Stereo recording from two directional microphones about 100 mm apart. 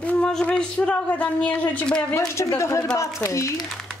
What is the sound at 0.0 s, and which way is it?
Speech, 10° left (ahead or behind).